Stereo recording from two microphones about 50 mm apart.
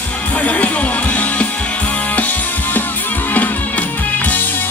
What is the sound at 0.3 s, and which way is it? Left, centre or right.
Music, left.